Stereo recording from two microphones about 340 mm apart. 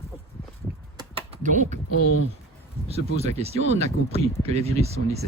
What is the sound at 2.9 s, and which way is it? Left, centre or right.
Speech, centre.